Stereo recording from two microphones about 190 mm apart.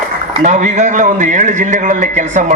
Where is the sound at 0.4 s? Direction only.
40° right (ahead or behind).